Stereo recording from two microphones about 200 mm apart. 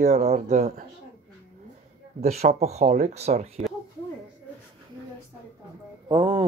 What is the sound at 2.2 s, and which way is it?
Speech, 35° right (ahead or behind).